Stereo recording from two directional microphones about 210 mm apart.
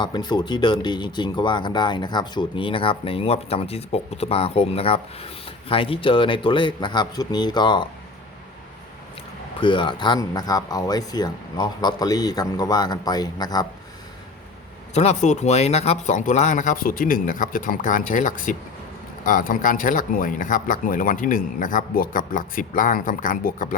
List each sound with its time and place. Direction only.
0.0 s speech: 20° left (ahead or behind)
9.6 s speech: 25° left (ahead or behind)
14.9 s speech: 35° left (ahead or behind)